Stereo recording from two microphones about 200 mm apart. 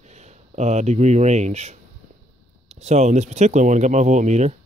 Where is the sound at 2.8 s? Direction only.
35° right (ahead or behind).